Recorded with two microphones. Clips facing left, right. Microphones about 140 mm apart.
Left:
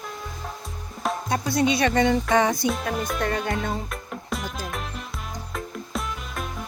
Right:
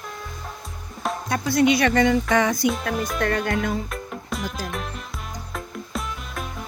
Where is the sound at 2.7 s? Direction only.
Centre (ahead or behind).